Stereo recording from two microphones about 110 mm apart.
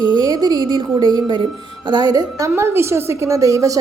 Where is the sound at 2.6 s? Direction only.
25° right (ahead or behind).